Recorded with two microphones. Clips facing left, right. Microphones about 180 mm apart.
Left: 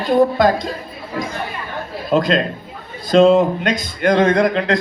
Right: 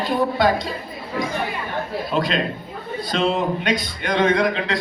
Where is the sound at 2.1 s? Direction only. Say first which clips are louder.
Left 7 dB; 45° left (ahead or behind).